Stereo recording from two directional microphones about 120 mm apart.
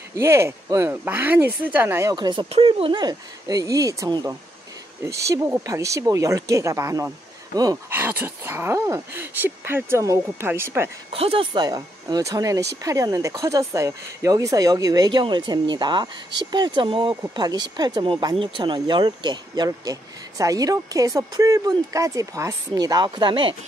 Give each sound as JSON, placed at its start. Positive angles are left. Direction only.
{"t": 0.1, "sound": "speech", "side_deg": -20}
{"t": 2.0, "sound": "speech", "side_deg": -40}
{"t": 2.5, "sound": "speech", "side_deg": -50}
{"t": 7.9, "sound": "speech", "side_deg": -15}
{"t": 11.1, "sound": "speech", "side_deg": -55}
{"t": 11.5, "sound": "speech", "side_deg": -35}